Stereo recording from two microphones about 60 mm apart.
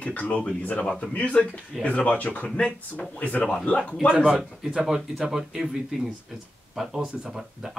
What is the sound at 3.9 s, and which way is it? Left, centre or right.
Speech, centre.